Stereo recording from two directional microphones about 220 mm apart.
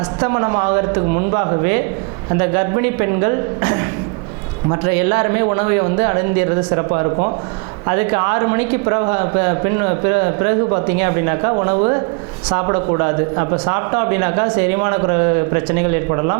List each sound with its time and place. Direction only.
0.2 s a man's voice: 20° right (ahead or behind)